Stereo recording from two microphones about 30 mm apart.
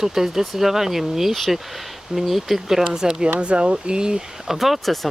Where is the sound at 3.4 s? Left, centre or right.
Right.